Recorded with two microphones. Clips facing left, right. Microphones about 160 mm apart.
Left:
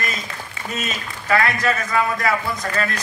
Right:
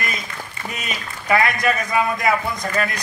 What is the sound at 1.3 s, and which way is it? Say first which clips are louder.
A man's voice: right 1 dB; 15° right (ahead or behind).